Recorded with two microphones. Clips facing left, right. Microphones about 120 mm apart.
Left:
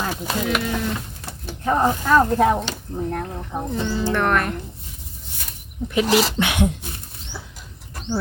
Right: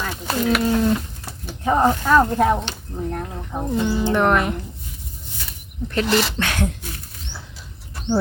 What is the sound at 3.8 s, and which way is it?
Speech, 15° right (ahead or behind).